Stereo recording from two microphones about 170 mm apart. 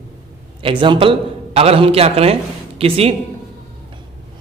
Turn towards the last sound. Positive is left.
turn(degrees=-35)  # may be behind; listen again after turning